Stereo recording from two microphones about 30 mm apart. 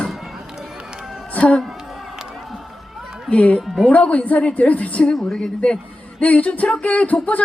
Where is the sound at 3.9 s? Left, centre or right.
Left.